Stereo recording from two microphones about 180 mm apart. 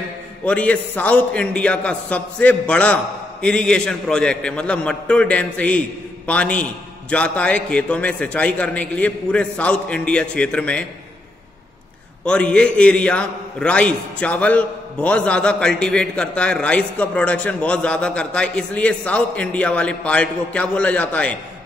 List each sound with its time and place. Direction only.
0.5 s a man's voice: 5° left (ahead or behind)
12.3 s a man's voice: 5° left (ahead or behind)